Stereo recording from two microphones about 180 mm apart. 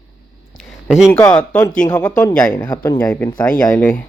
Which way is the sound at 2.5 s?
25° left (ahead or behind).